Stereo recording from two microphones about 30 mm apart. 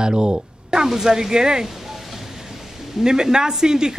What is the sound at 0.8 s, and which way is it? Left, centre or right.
Speech, centre.